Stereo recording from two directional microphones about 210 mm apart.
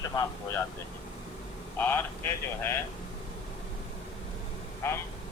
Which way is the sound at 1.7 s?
10° left (ahead or behind).